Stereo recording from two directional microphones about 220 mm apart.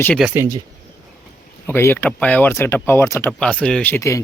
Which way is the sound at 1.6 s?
10° left (ahead or behind).